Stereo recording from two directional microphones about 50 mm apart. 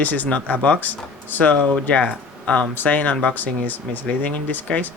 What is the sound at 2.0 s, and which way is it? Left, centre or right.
Speech, left.